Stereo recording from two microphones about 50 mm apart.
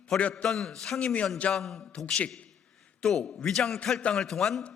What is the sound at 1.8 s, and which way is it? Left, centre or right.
Speech, centre.